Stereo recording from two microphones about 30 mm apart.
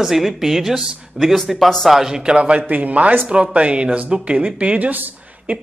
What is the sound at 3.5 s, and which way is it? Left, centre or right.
Speech, right.